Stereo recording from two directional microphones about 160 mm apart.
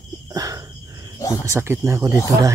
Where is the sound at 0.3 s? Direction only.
20° right (ahead or behind).